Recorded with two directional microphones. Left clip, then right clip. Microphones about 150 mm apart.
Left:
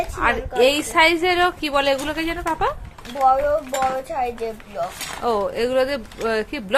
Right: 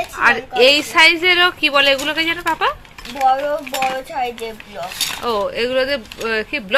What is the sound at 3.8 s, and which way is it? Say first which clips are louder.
Speech: right 2 dB; 5° right (ahead or behind).